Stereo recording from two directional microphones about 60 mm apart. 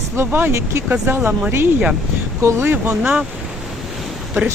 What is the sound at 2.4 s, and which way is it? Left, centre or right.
Speech, right.